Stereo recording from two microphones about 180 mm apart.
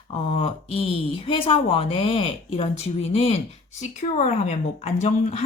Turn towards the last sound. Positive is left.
turn(degrees=35)  # may be behind; listen again after turning